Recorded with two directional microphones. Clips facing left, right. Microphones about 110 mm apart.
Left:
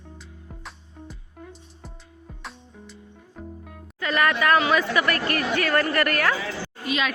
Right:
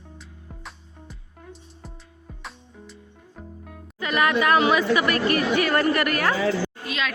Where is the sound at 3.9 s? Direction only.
15° right (ahead or behind).